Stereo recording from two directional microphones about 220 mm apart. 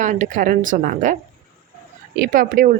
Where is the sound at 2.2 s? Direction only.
40° right (ahead or behind).